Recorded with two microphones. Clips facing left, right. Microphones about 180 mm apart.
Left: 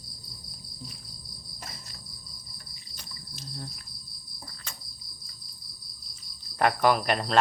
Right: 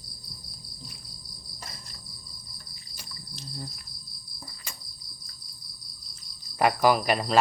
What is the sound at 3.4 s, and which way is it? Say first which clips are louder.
Cricket: right 1 dB; centre (ahead or behind).